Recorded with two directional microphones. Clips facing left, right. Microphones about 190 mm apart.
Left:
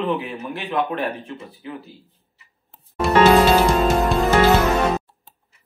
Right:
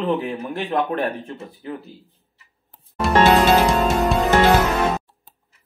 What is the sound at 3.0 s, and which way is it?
Music, centre (ahead or behind).